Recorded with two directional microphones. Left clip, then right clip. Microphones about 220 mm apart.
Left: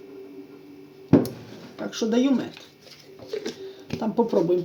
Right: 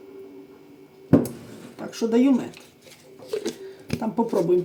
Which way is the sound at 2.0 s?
20° left (ahead or behind).